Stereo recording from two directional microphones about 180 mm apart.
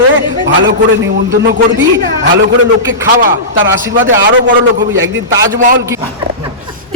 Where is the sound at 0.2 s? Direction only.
90° right.